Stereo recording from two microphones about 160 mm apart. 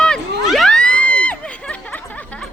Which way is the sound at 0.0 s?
Centre (ahead or behind).